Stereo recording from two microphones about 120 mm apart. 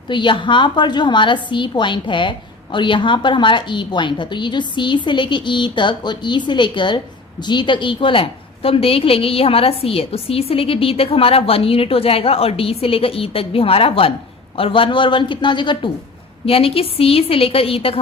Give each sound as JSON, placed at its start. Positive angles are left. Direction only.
{"t": 0.1, "sound": "a woman's voice", "side_deg": 45}
{"t": 16.5, "sound": "a woman's voice", "side_deg": 50}